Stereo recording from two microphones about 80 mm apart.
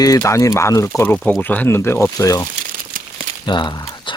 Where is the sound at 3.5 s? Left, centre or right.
Left.